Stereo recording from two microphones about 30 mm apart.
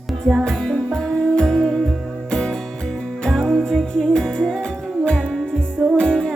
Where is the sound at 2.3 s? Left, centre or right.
Left.